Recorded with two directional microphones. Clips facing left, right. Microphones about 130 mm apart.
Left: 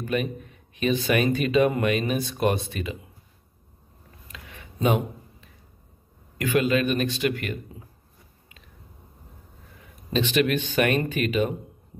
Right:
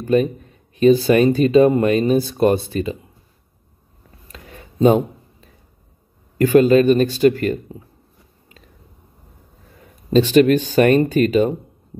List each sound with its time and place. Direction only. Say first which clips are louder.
0.0 s speech: right 10 dB; 35° right (ahead or behind)
4.3 s a sound: right 5 dB; 35° right (ahead or behind)
6.3 s speech: right 10 dB; 35° right (ahead or behind)
10.1 s speech: right 10 dB; 40° right (ahead or behind)